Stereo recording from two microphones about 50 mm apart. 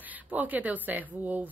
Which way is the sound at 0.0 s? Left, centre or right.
Right.